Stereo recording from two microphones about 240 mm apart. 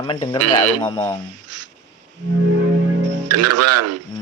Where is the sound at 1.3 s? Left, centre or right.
Right.